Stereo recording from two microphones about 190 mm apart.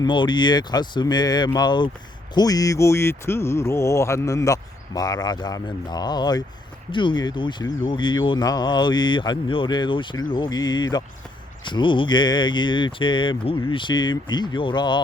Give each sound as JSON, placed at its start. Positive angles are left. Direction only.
{"t": 0.0, "sound": "speech", "side_deg": 25}